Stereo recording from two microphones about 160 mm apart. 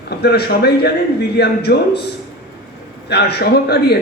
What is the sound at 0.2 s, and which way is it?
A man's voice, 90° left.